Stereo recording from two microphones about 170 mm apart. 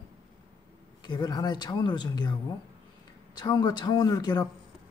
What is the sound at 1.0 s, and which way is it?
A man's voice, 25° left (ahead or behind).